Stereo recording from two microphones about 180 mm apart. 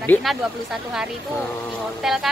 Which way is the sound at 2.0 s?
Centre (ahead or behind).